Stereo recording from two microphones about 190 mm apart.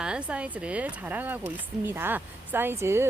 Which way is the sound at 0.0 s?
5° right (ahead or behind).